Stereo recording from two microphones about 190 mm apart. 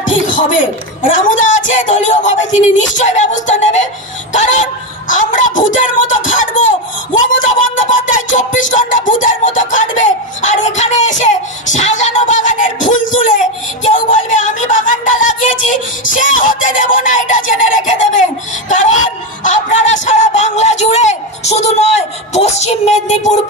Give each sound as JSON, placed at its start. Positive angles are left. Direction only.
{"t": 1.1, "sound": "music", "side_deg": 40}
{"t": 8.7, "sound": "speech", "side_deg": 45}
{"t": 13.9, "sound": "music", "side_deg": 45}